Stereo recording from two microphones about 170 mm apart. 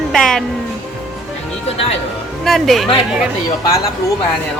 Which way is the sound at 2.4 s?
Centre (ahead or behind).